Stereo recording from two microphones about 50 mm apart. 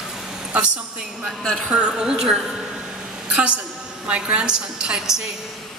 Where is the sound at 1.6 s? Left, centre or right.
Right.